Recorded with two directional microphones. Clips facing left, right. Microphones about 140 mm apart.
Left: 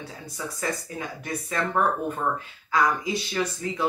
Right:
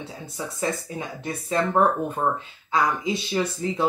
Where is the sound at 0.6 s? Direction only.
25° right (ahead or behind).